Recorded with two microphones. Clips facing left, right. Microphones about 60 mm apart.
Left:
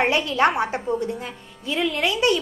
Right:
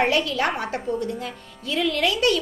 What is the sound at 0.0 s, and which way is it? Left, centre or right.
A woman's voice, left.